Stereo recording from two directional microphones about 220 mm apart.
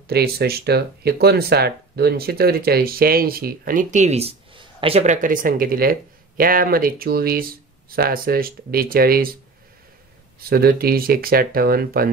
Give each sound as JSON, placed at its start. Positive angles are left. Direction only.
{"t": 0.1, "sound": "speech", "side_deg": -45}
{"t": 10.5, "sound": "speech", "side_deg": -45}